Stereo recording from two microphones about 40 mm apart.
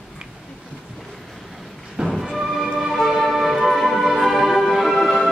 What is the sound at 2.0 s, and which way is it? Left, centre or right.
Music, right.